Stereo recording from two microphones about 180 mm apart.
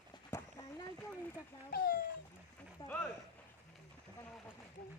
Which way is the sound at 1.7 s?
55° left (ahead or behind).